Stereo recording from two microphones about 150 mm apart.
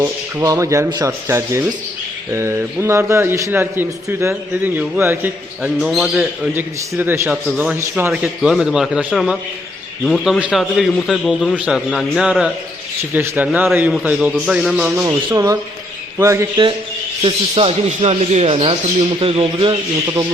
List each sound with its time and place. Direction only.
0.0 s a man's voice: 20° right (ahead or behind)
5.8 s a man's voice: centre (ahead or behind)
6.5 s a man's voice: 15° right (ahead or behind)
16.1 s speech: 20° right (ahead or behind)
17.2 s speech: 40° right (ahead or behind)